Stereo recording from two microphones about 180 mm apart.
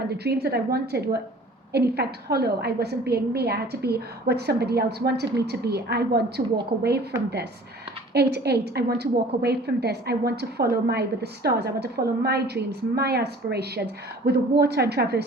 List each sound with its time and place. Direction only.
0.1 s a woman's voice: 65° right (ahead or behind)
8.1 s a woman's voice: 65° right (ahead or behind)